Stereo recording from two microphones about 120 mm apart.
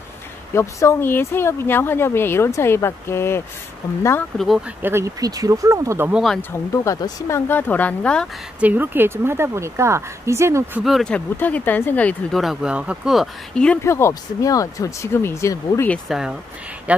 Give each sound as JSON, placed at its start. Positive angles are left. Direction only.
{"t": 0.6, "sound": "speech", "side_deg": 25}
{"t": 4.8, "sound": "a woman's voice", "side_deg": -25}
{"t": 6.1, "sound": "speech", "side_deg": 0}
{"t": 6.7, "sound": "speech", "side_deg": 25}
{"t": 8.5, "sound": "a woman's voice", "side_deg": -15}
{"t": 10.8, "sound": "speech", "side_deg": 0}
{"t": 11.1, "sound": "speech", "side_deg": 15}
{"t": 12.4, "sound": "speech", "side_deg": -5}
{"t": 13.8, "sound": "speech", "side_deg": 25}
{"t": 16.1, "sound": "speech", "side_deg": -5}